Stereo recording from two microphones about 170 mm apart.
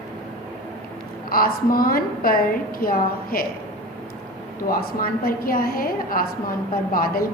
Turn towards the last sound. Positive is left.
turn(degrees=60)  # may be behind; listen again after turning